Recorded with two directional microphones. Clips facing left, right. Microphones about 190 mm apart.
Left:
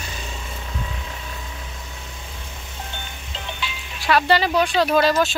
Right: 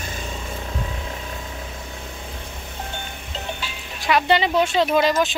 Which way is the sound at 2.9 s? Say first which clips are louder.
Right 3 dB; 40° right (ahead or behind).